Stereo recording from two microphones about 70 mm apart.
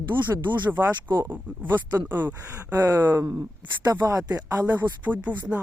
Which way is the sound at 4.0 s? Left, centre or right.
Right.